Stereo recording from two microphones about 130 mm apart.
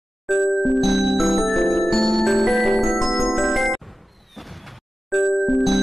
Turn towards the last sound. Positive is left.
turn(degrees=0)  # may be behind; listen again after turning